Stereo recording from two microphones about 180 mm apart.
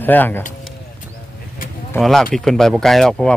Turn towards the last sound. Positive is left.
turn(degrees=0)  # may be behind; listen again after turning